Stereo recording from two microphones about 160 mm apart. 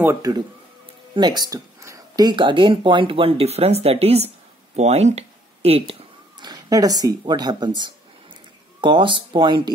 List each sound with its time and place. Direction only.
0.0 s speech: 20° right (ahead or behind); by 5.9 s 40° right (ahead or behind)
6.4 s speech: 25° right (ahead or behind)